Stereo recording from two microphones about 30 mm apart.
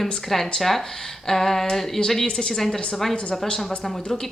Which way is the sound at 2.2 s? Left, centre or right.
Left.